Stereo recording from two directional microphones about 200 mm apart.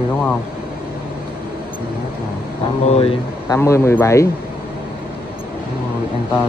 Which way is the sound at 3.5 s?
15° left (ahead or behind).